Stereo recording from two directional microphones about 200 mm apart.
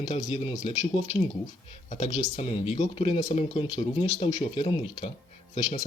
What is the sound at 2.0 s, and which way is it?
Speech, 35° left (ahead or behind).